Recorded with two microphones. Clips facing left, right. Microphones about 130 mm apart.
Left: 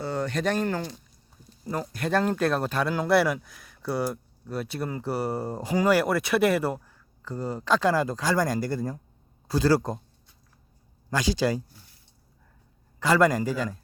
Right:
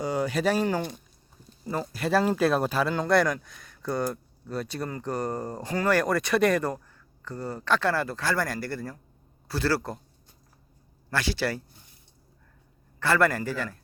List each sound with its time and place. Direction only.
0.0 s speech: 10° right (ahead or behind)
1.6 s speech: centre (ahead or behind); by 10.0 s 20° left (ahead or behind)
11.1 s speech: 15° left (ahead or behind)
13.0 s speech: 15° left (ahead or behind)